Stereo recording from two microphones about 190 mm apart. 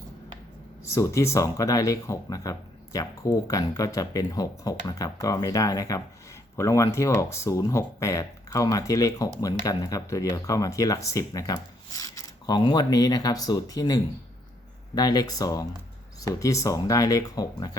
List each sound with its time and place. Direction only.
0.9 s speech: 15° left (ahead or behind)